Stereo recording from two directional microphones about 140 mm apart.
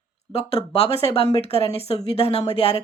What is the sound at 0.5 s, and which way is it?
Speech, 45° left (ahead or behind).